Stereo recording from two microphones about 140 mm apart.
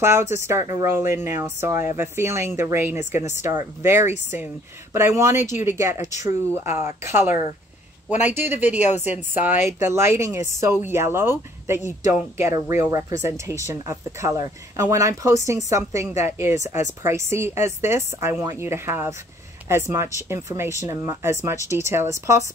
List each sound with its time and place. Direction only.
0.0 s a woman's voice: 20° right (ahead or behind)
8.7 s a woman's voice: 55° left (ahead or behind)
9.3 s a woman's voice: 15° right (ahead or behind)